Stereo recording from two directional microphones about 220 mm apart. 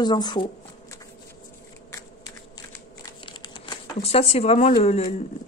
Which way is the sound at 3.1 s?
20° left (ahead or behind).